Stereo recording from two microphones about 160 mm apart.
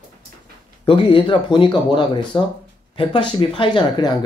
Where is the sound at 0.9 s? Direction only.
35° left (ahead or behind).